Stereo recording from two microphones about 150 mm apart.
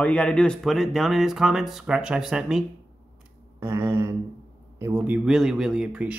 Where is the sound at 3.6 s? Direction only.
15° right (ahead or behind).